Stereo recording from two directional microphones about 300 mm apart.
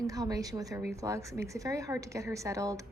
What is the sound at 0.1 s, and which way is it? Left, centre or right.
A woman's voice, centre.